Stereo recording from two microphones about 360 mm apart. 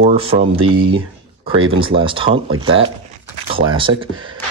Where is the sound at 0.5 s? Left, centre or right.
Right.